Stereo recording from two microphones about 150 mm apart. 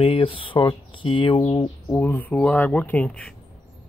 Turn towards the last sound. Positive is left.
turn(degrees=10)  # may be behind; listen again after turning